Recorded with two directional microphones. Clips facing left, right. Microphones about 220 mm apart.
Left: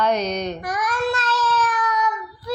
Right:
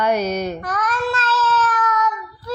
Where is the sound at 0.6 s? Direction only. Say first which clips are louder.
Even; 10° left (ahead or behind).